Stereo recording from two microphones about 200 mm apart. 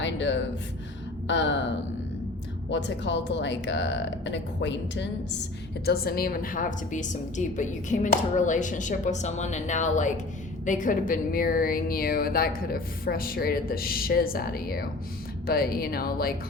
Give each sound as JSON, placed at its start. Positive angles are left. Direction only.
{"t": 0.0, "sound": "gasp", "side_deg": 65}
{"t": 1.3, "sound": "speech", "side_deg": 65}
{"t": 2.6, "sound": "speech", "side_deg": 65}
{"t": 5.8, "sound": "a woman's voice", "side_deg": 50}